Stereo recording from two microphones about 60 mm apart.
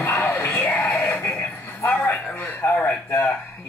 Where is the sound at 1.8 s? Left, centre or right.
Left.